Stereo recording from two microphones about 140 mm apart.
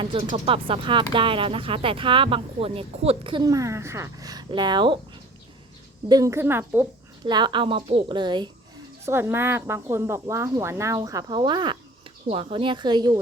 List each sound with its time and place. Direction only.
0.0 s speech: 40° right (ahead or behind)
3.5 s speech: 20° right (ahead or behind)
6.1 s speech: 25° right (ahead or behind)
7.3 s speech: 35° right (ahead or behind)
9.0 s speech: 20° right (ahead or behind)